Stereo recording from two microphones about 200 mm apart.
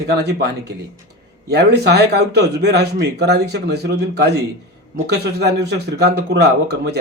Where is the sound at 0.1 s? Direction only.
55° right (ahead or behind).